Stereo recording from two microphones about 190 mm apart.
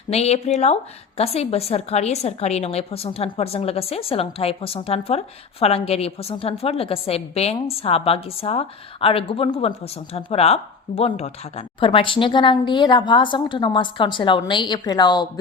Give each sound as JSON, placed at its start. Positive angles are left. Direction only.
{"t": 0.1, "sound": "a woman's voice", "side_deg": 35}